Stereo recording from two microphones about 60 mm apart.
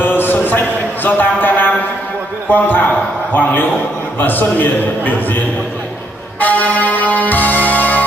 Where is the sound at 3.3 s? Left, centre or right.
Left.